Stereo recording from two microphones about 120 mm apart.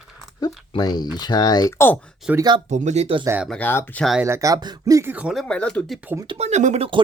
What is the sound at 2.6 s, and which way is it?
Speech, 75° right (ahead or behind).